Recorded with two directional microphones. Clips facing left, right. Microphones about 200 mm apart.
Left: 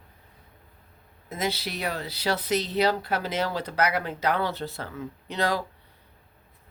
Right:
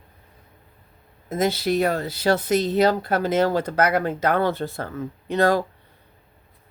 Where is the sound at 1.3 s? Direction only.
50° right (ahead or behind).